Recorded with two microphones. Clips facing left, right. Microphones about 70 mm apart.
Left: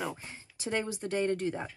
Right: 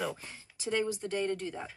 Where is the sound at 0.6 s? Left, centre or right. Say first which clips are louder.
Right 1 dB; left.